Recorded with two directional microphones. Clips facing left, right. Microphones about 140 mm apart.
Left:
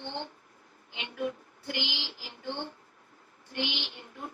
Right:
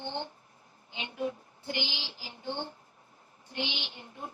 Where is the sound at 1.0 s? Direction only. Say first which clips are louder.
Even; 25° right (ahead or behind).